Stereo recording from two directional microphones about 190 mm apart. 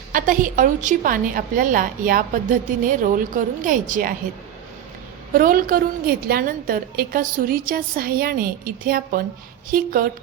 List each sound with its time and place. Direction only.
0.1 s a woman's voice: 45° right (ahead or behind)
5.3 s a woman's voice: 50° right (ahead or behind)